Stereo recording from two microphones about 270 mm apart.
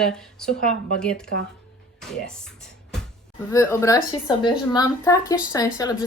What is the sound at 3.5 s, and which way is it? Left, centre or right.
A woman's voice, centre.